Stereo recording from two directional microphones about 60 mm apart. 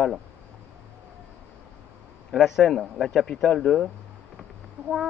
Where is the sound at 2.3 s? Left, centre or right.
Centre.